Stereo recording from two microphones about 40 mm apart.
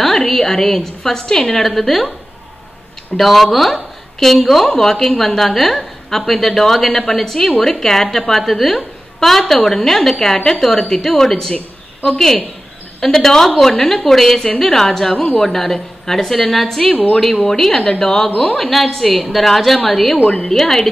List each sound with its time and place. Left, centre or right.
0.0 s a woman's voice: centre
1.6 s a woman's voice: centre
3.2 s a woman's voice: centre
11.5 s a sound: left
13.0 s a woman's voice: centre
20.2 s a woman's voice: centre